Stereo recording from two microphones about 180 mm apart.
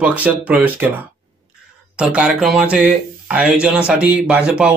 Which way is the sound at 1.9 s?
5° right (ahead or behind).